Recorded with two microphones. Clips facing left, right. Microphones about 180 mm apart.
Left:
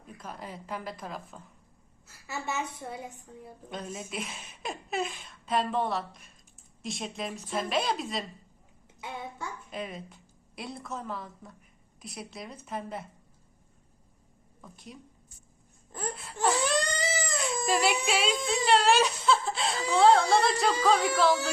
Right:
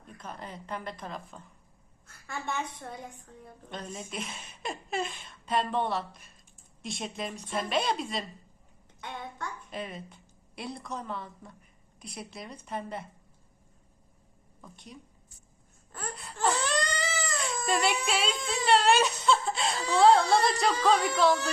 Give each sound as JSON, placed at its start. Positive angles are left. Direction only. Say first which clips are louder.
{"t": 0.0, "sound": "a woman's voice", "louder": "left 1 dB", "side_deg": 5}
{"t": 14.6, "sound": "a woman's voice", "louder": "left 1 dB", "side_deg": 0}
{"t": 15.9, "sound": "wail", "louder": "left 4 dB", "side_deg": 15}
{"t": 16.1, "sound": "crying", "louder": "left 1 dB", "side_deg": 0}
{"t": 17.7, "sound": "a woman's voice", "louder": "left 1 dB", "side_deg": 5}